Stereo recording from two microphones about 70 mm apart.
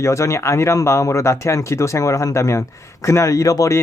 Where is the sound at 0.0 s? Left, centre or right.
Left.